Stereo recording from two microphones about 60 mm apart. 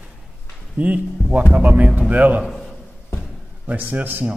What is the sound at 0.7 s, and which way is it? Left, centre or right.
Speech, right.